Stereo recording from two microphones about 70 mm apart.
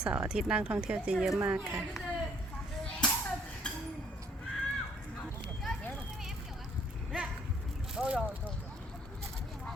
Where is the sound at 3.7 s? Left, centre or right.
Centre.